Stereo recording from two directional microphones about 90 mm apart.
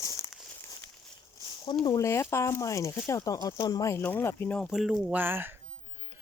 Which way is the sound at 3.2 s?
45° left (ahead or behind).